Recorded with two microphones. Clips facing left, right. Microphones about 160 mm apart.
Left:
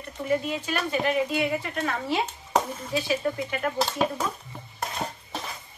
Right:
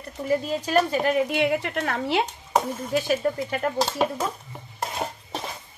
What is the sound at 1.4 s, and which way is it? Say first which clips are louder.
Speech: right 3 dB; 75° right (ahead or behind).